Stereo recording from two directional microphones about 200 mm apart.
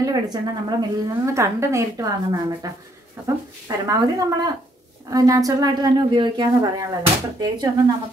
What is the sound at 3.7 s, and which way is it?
Speech, 15° right (ahead or behind).